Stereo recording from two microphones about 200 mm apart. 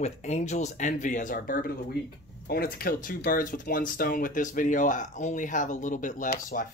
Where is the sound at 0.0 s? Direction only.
35° left (ahead or behind).